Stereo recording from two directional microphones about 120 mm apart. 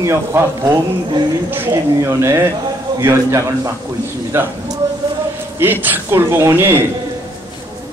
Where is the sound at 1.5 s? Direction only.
20° right (ahead or behind).